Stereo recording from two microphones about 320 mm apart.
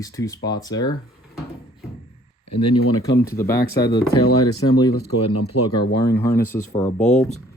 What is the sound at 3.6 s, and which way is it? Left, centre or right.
Speech, left.